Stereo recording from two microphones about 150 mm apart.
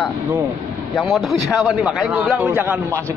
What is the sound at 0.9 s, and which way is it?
Speech, centre (ahead or behind).